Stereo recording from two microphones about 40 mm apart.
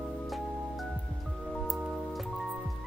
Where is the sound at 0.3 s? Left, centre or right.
Centre.